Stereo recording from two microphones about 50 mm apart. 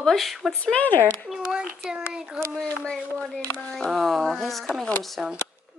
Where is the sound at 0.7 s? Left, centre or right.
Left.